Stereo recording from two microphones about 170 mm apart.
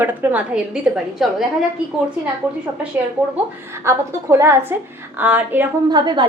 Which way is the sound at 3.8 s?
15° right (ahead or behind).